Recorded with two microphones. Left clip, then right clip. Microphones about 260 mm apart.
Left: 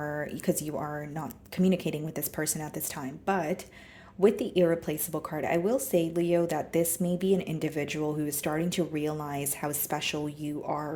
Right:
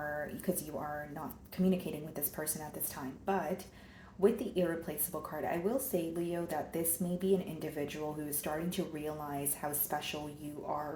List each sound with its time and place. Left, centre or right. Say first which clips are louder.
0.0 s speech: left 5 dB; left